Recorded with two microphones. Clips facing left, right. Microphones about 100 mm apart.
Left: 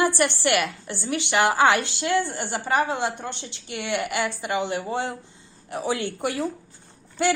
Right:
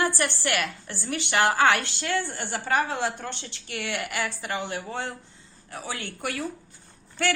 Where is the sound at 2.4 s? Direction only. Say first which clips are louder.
Left 2 dB; centre (ahead or behind).